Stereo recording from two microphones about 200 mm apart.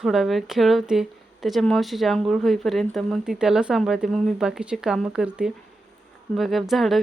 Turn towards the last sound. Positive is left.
turn(degrees=0)  # may be behind; listen again after turning